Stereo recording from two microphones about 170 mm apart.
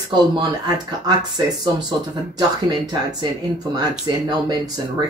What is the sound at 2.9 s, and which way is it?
Speech, 25° right (ahead or behind).